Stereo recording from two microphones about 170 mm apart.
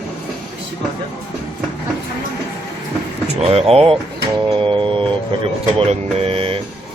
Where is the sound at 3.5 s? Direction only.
35° right (ahead or behind).